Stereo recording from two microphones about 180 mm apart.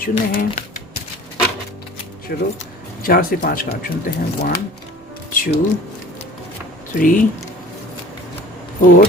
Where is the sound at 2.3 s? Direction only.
55° left (ahead or behind).